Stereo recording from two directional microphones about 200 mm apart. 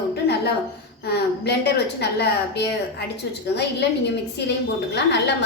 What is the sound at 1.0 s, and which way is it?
A woman's voice, 55° left (ahead or behind).